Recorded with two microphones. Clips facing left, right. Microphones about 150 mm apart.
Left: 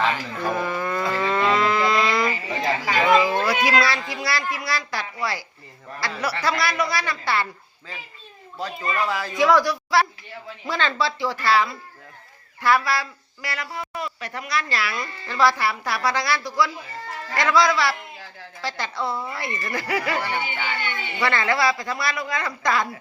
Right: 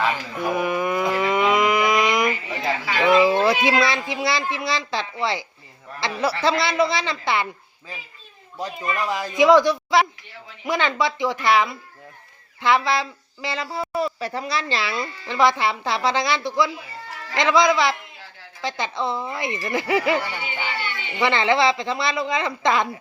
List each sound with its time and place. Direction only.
0.3 s livestock: 15° right (ahead or behind)
2.5 s chatter: 40° left (ahead or behind)
3.3 s a woman's voice: 25° right (ahead or behind)
8.5 s a woman's voice: 15° right (ahead or behind)